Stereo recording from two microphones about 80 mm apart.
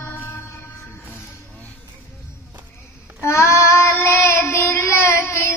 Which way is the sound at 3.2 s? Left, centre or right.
Left.